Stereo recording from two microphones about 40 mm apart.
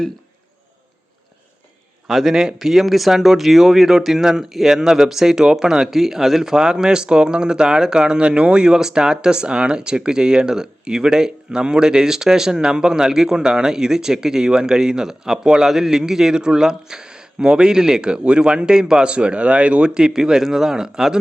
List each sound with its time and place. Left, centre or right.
2.0 s a man's voice: centre; by 19.9 s right
19.9 s speech: centre